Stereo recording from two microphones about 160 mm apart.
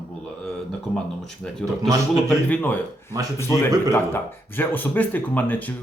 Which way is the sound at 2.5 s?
10° left (ahead or behind).